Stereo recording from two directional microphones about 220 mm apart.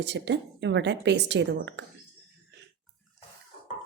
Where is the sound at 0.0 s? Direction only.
50° right (ahead or behind).